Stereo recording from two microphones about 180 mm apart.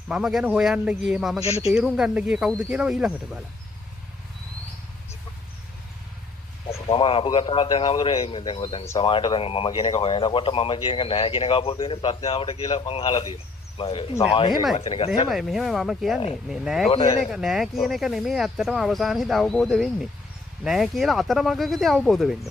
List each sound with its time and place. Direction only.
0.1 s speech: 5° right (ahead or behind)
1.4 s speech: 35° left (ahead or behind)
1.7 s speech: 5° right (ahead or behind)
6.7 s speech: 30° left (ahead or behind)
14.5 s speech: centre (ahead or behind)
14.8 s speech: 30° left (ahead or behind)
15.2 s speech: centre (ahead or behind)
16.9 s speech: 20° left (ahead or behind)
17.3 s speech: centre (ahead or behind)